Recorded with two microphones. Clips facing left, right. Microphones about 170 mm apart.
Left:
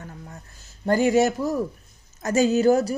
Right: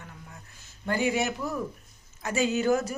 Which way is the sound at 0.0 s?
40° left (ahead or behind).